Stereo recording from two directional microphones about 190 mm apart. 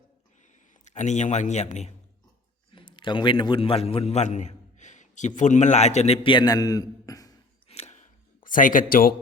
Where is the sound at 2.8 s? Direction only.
25° left (ahead or behind).